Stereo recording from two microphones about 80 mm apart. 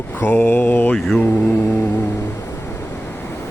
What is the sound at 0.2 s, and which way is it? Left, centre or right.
Mantra, left.